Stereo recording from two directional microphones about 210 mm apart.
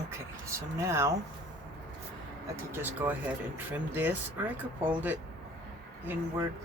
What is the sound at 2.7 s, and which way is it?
Speech, 10° right (ahead or behind).